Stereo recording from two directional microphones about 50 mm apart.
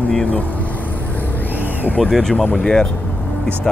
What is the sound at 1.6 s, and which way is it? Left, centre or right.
Vehicle, left.